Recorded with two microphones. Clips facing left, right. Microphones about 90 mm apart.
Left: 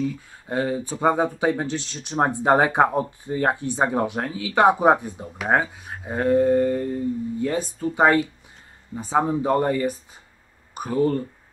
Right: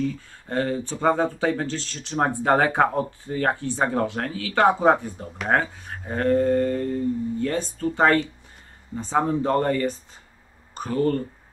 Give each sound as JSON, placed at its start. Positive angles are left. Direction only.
{"t": 0.0, "sound": "speech", "side_deg": 10}